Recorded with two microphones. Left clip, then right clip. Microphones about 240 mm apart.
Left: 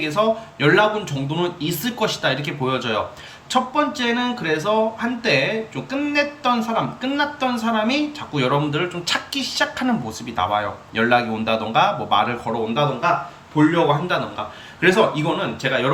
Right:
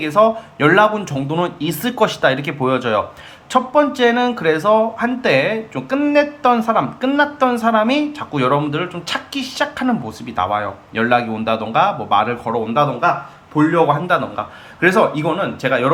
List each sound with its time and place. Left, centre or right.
0.0 s speech: centre
14.1 s speech: centre